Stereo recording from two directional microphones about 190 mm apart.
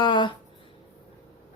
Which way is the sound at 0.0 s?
25° left (ahead or behind).